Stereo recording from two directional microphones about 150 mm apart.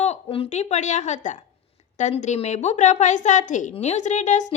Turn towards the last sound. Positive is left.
turn(degrees=55)  # may be behind; listen again after turning